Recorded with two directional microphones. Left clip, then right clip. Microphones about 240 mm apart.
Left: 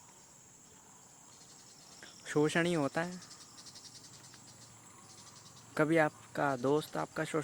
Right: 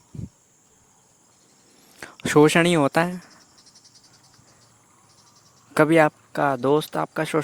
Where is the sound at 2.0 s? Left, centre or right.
Right.